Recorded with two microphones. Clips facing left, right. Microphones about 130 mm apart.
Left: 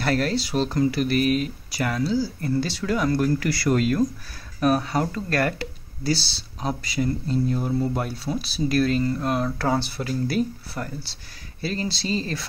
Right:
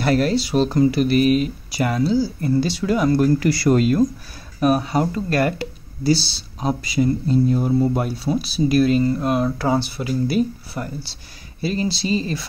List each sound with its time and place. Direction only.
0.0 s speech: 15° right (ahead or behind)
4.6 s speech: 15° right (ahead or behind)